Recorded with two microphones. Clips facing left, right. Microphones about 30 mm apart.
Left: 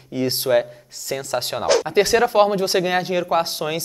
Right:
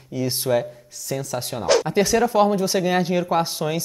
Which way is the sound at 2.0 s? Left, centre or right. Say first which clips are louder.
Left 5 dB; left.